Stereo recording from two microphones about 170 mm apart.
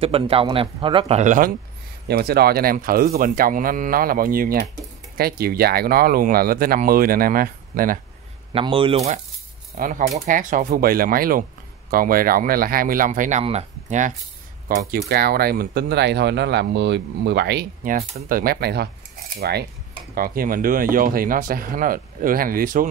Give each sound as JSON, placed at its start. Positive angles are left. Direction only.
{"t": 0.0, "sound": "speech", "side_deg": -35}
{"t": 2.0, "sound": "speech", "side_deg": -70}
{"t": 8.5, "sound": "speech", "side_deg": -30}
{"t": 9.8, "sound": "speech", "side_deg": -50}
{"t": 14.7, "sound": "speech", "side_deg": -60}
{"t": 18.3, "sound": "speech", "side_deg": -65}
{"t": 20.2, "sound": "speech", "side_deg": -55}